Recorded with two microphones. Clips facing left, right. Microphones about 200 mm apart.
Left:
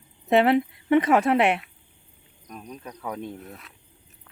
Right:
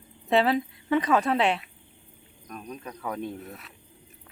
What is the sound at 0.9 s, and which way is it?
Speech, 25° left (ahead or behind).